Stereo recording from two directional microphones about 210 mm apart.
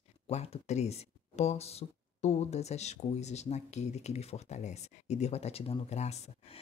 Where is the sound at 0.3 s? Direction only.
30° left (ahead or behind).